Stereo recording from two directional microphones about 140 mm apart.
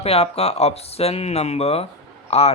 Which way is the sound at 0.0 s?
45° left (ahead or behind).